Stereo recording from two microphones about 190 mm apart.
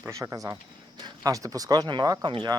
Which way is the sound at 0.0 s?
15° right (ahead or behind).